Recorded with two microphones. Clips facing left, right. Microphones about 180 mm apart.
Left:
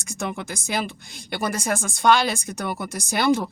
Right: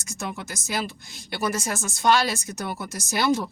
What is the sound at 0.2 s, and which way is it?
Speech, 55° left (ahead or behind).